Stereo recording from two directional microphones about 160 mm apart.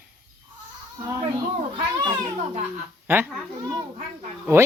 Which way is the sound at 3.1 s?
15° right (ahead or behind).